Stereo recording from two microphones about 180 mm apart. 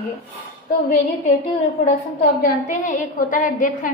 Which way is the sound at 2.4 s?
45° left (ahead or behind).